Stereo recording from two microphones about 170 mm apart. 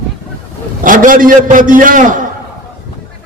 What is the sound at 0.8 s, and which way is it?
A man's voice, 50° right (ahead or behind).